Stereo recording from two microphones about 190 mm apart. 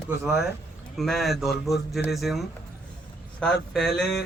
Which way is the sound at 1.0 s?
Centre (ahead or behind).